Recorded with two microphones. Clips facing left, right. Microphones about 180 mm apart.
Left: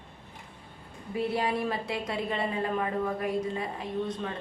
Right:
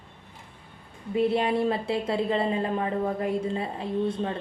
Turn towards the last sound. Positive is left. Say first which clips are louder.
# right 5 dB
turn(degrees=-30)  # may be behind; listen again after turning